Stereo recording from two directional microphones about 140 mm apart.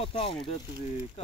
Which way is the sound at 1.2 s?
50° left (ahead or behind).